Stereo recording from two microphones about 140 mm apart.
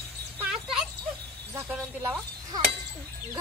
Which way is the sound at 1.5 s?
15° right (ahead or behind).